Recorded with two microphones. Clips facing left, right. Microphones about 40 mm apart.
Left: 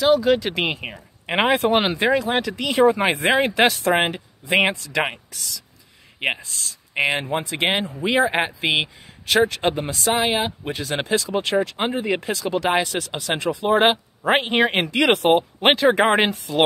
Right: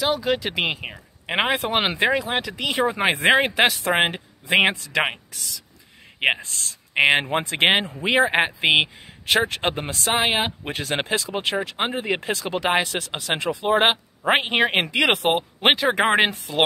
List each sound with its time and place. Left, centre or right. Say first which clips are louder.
0.0 s speech: left 5 dB; centre
1.9 s speech: left 2 dB; centre
3.0 s speech: right 1 dB; right
3.9 s speech: left 2 dB; centre
4.6 s speech: right 1 dB; right
6.1 s speech: right 3 dB; right
7.9 s a man's voice: even; right
13.0 s a man's voice: left 1 dB; right
14.2 s speech: left 1 dB; centre
15.6 s speech: left 1 dB; centre
16.3 s speech: left 2 dB; right